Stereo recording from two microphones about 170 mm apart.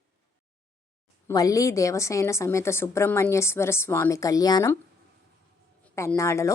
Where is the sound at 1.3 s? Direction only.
20° left (ahead or behind).